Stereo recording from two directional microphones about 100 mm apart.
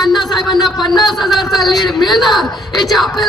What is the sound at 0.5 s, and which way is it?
Speech, 45° left (ahead or behind).